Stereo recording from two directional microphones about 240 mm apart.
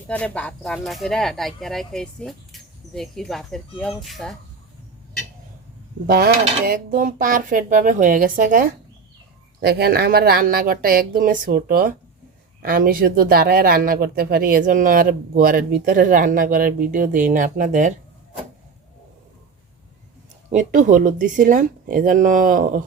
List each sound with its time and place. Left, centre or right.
0.1 s speech: centre
6.1 s speech: right
20.5 s speech: right